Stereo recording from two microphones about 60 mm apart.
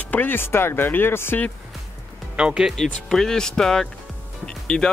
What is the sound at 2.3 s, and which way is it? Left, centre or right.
Speech, centre.